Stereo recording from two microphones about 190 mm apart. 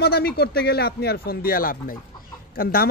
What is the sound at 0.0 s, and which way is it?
Speech, 55° left (ahead or behind).